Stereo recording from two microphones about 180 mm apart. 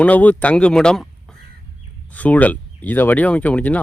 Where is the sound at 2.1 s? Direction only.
10° left (ahead or behind).